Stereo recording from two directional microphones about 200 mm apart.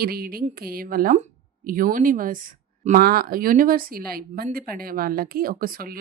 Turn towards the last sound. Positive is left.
turn(degrees=-45)  # may be behind; listen again after turning